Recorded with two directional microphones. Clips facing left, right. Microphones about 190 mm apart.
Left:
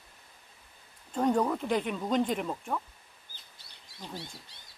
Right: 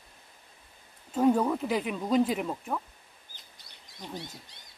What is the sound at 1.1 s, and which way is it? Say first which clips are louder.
Speech: right 3 dB; 5° right (ahead or behind).